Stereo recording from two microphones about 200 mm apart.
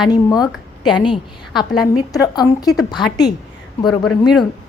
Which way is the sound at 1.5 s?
Centre (ahead or behind).